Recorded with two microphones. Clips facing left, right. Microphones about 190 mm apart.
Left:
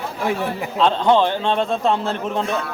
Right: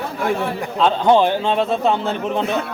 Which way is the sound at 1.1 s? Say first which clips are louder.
Right 4 dB; 15° right (ahead or behind).